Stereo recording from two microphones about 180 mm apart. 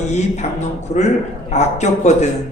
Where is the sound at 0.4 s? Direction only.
35° left (ahead or behind).